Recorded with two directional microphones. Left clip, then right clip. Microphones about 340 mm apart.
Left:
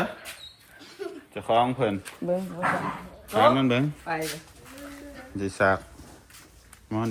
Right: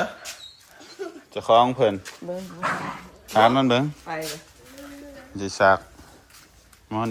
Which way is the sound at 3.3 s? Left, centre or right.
Centre.